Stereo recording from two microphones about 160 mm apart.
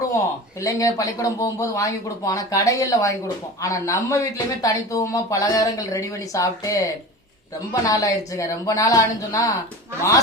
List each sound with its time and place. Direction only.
0.6 s speech: 20° left (ahead or behind)